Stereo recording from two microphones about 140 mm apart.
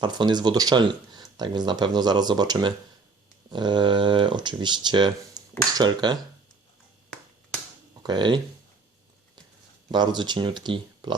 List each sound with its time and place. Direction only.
0.0 s speech: 30° right (ahead or behind)
8.0 s speech: 30° right (ahead or behind)
9.9 s speech: 30° right (ahead or behind)